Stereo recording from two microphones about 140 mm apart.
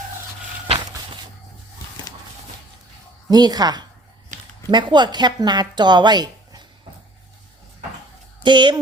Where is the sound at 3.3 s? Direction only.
30° right (ahead or behind).